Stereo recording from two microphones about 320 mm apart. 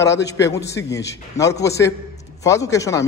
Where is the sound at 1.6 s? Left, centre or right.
Centre.